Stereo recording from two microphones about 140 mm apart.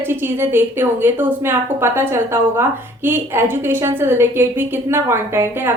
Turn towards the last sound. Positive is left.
turn(degrees=-15)  # may be behind; listen again after turning